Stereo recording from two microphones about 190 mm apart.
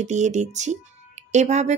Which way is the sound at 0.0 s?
40° right (ahead or behind).